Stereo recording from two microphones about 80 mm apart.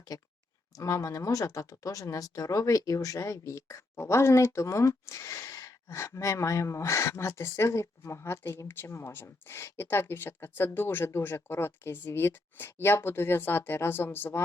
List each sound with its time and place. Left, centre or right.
0.8 s speech: left